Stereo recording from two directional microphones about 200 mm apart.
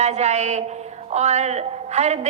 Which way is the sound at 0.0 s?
35° right (ahead or behind).